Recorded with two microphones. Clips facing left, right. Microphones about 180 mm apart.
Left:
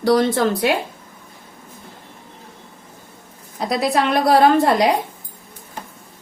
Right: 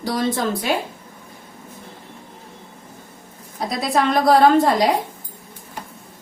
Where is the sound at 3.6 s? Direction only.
70° left (ahead or behind).